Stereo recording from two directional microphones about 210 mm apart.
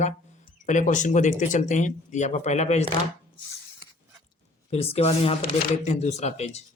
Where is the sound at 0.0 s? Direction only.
35° left (ahead or behind).